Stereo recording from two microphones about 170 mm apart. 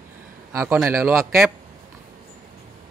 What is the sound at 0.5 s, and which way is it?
Speech, 15° right (ahead or behind).